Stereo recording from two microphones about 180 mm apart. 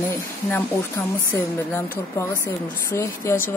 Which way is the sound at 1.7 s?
15° left (ahead or behind).